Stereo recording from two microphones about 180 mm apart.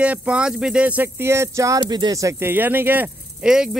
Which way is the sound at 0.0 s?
5° right (ahead or behind).